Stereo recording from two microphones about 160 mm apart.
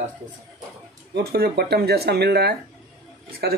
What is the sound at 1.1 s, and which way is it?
Speech, 85° right.